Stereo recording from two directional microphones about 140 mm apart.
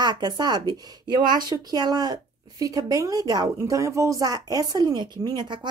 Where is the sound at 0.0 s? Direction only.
30° right (ahead or behind).